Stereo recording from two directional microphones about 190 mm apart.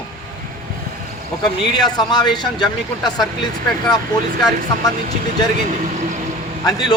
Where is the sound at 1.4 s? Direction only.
20° left (ahead or behind).